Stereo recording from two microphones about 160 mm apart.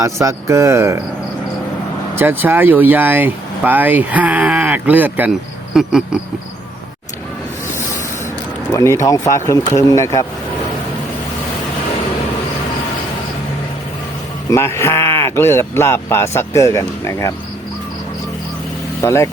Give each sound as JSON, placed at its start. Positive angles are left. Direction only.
{"t": 0.0, "sound": "speech", "side_deg": -20}
{"t": 2.1, "sound": "speech", "side_deg": -10}
{"t": 5.7, "sound": "a sound", "side_deg": 0}
{"t": 8.7, "sound": "speech", "side_deg": 20}
{"t": 14.5, "sound": "speech", "side_deg": 15}
{"t": 19.0, "sound": "speech", "side_deg": 15}